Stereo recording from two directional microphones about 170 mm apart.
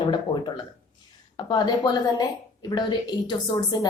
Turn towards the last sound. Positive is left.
turn(degrees=25)  # may be behind; listen again after turning